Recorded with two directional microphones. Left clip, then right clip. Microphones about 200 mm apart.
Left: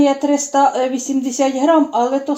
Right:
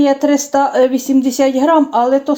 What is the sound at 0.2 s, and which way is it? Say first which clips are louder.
Speech: right 1 dB; 40° right (ahead or behind).